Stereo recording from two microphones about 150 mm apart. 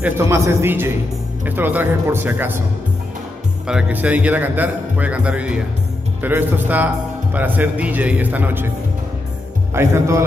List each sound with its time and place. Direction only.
0.0 s speech: 15° right (ahead or behind)
3.6 s speech: 5° right (ahead or behind)
9.8 s speech: 20° right (ahead or behind)